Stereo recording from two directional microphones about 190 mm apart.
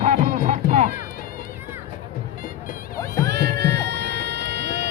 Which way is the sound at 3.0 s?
15° left (ahead or behind).